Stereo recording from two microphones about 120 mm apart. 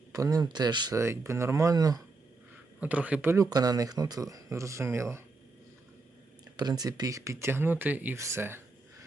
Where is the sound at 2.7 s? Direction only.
10° right (ahead or behind).